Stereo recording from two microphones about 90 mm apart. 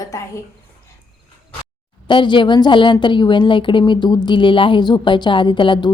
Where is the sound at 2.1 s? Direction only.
65° left (ahead or behind).